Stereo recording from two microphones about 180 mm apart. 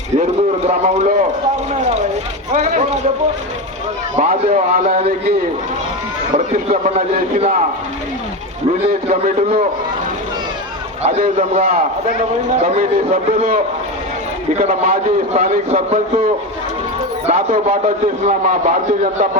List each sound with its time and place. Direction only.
0.2 s a man's voice: 40° right (ahead or behind)
1.8 s vehicle: 40° right (ahead or behind)
2.5 s a man's voice: 40° right (ahead or behind)
4.1 s a man's voice: 40° right (ahead or behind)
6.3 s a man's voice: 40° right (ahead or behind)
11.0 s a man's voice: 40° right (ahead or behind)
14.6 s a man's voice: 50° right (ahead or behind)
14.8 s a man's voice: 35° right (ahead or behind)